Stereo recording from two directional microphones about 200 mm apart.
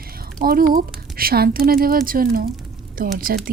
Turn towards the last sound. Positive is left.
turn(degrees=-45)  # may be behind; listen again after turning